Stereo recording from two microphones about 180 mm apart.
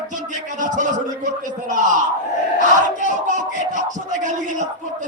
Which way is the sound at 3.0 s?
45° right (ahead or behind).